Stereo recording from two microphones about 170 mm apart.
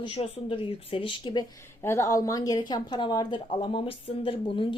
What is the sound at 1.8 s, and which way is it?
A woman's voice, 15° left (ahead or behind).